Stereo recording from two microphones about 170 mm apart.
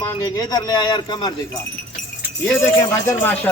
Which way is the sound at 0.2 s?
25° left (ahead or behind).